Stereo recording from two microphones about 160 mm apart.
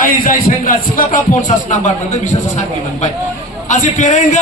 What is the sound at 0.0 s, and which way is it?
A man's voice, 60° left (ahead or behind).